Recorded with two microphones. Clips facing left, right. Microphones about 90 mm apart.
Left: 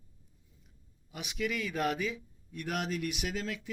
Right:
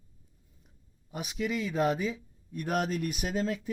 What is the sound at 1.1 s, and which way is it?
Speech, 40° right (ahead or behind).